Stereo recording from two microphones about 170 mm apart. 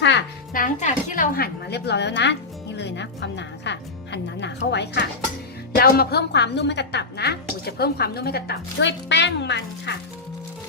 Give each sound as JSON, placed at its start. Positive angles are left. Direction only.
{"t": 0.0, "sound": "a child's voice", "side_deg": 90}
{"t": 0.5, "sound": "a woman's voice", "side_deg": 50}
{"t": 5.7, "sound": "a woman's voice", "side_deg": 65}